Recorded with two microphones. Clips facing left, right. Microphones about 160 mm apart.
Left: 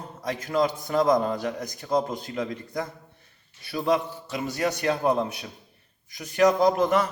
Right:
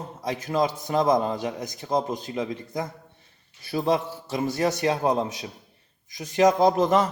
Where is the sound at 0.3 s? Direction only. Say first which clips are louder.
Even; 20° right (ahead or behind).